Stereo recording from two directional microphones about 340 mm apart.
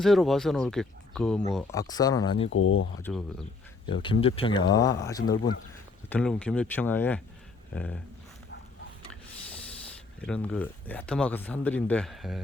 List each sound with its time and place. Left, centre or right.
0.0 s speech: centre
2.5 s speech: left
3.0 s speech: centre
3.8 s speech: centre
10.2 s speech: centre